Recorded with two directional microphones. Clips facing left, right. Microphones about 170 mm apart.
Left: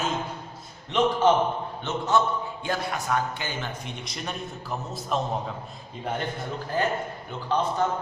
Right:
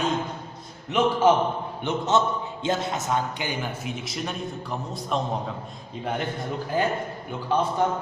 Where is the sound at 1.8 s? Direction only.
20° right (ahead or behind).